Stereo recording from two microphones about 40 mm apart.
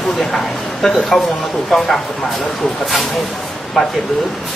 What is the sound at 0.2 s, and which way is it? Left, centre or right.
Speech, centre.